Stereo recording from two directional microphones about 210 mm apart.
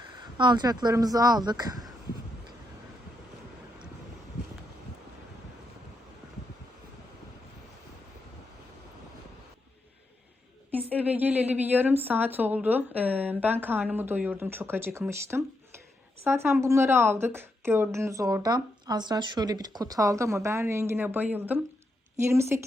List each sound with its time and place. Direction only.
0.2 s speech: 20° right (ahead or behind)
10.7 s a woman's voice: 5° right (ahead or behind)